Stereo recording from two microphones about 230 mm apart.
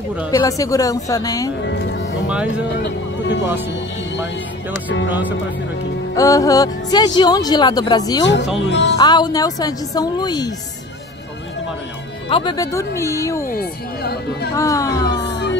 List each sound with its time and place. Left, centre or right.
0.3 s speech: centre
1.6 s music: left
2.2 s speech: centre
6.1 s speech: centre
8.5 s music: left
8.9 s speech: centre
12.3 s speech: left
13.5 s speech: left
14.5 s speech: centre
15.2 s music: left